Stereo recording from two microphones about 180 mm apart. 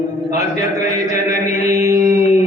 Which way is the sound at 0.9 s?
40° left (ahead or behind).